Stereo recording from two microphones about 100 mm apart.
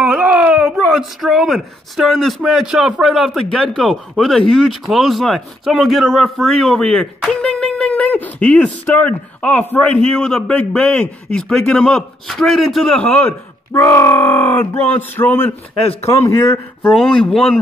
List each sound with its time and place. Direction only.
0.0 s speech: 10° right (ahead or behind)
12.9 s a man's voice: 15° left (ahead or behind)
13.7 s speech: 30° left (ahead or behind)
16.9 s speech: 5° left (ahead or behind)